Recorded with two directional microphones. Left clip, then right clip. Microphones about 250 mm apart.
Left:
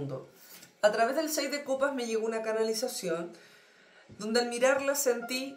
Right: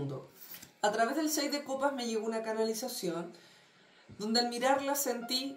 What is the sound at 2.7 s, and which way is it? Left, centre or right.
Speech, right.